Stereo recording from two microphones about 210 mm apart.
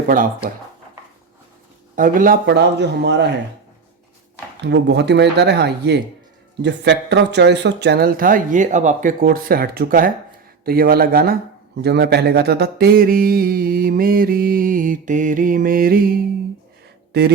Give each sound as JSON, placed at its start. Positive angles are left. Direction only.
{"t": 0.1, "sound": "speech", "side_deg": -40}
{"t": 2.0, "sound": "speech", "side_deg": -40}
{"t": 4.6, "sound": "speech", "side_deg": -55}